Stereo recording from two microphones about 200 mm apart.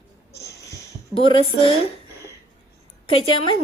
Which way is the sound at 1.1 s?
25° left (ahead or behind).